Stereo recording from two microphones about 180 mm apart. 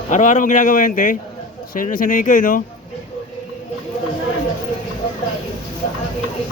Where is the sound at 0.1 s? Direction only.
45° left (ahead or behind).